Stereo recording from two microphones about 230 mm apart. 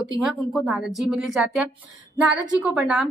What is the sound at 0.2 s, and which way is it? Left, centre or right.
A woman's voice, centre.